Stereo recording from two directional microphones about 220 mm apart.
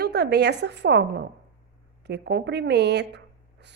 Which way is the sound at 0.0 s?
50° right (ahead or behind).